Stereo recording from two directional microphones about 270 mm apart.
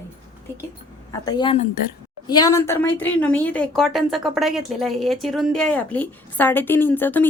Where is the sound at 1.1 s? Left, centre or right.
Centre.